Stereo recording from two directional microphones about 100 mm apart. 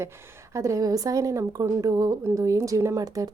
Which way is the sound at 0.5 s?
30° right (ahead or behind).